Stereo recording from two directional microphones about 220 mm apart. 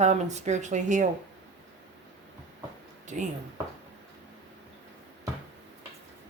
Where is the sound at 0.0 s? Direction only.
30° right (ahead or behind).